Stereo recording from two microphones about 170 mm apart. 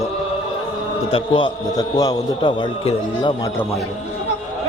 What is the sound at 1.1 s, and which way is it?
A man's voice, 30° left (ahead or behind).